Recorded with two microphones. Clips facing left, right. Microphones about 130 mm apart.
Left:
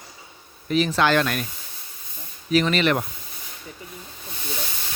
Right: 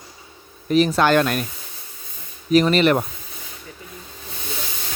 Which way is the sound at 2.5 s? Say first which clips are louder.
Right 5 dB; 40° right (ahead or behind).